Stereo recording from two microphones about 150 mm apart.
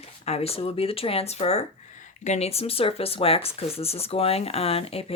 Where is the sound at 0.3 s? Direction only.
40° left (ahead or behind).